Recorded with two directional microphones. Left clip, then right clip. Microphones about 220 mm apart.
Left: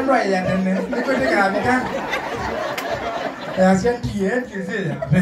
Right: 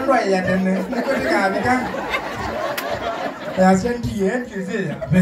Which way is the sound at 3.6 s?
30° right (ahead or behind).